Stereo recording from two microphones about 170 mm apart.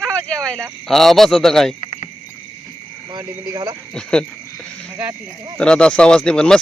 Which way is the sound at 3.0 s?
15° right (ahead or behind).